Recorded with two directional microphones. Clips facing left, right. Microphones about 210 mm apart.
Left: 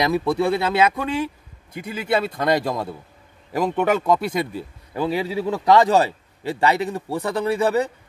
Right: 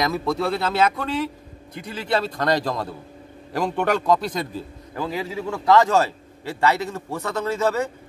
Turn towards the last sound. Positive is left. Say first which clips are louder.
# left 3 dB
turn(degrees=15)  # may be behind; listen again after turning